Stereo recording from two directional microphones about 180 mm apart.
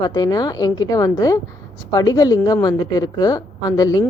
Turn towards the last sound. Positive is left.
turn(degrees=20)  # may be behind; listen again after turning